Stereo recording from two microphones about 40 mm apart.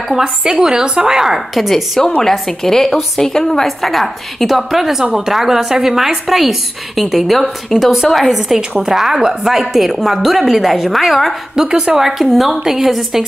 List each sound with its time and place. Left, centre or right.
0.4 s a woman's voice: centre
2.3 s a woman's voice: centre
11.6 s a woman's voice: centre